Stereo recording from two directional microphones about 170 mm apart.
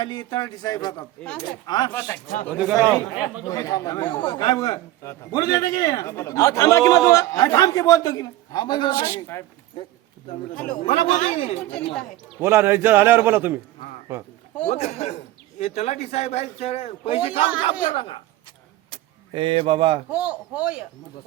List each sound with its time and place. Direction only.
0.0 s a man's voice: 25° left (ahead or behind)
2.6 s a man's voice: 5° right (ahead or behind)
3.4 s a man's voice: 20° left (ahead or behind)
10.5 s speech: 5° left (ahead or behind)
10.8 s speech: 40° left (ahead or behind)
12.4 s a man's voice: 15° right (ahead or behind)
14.7 s speech: 40° left (ahead or behind)
18.9 s vehicle: 30° right (ahead or behind)
20.1 s a man's voice: 5° right (ahead or behind)